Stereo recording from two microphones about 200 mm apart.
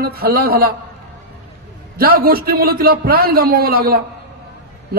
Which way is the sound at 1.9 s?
45° right (ahead or behind).